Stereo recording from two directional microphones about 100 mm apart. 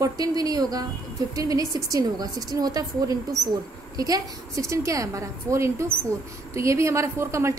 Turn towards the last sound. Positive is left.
turn(degrees=-30)  # may be behind; listen again after turning